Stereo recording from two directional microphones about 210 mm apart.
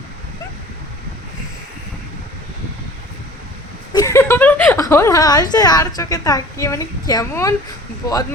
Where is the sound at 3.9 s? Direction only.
15° left (ahead or behind).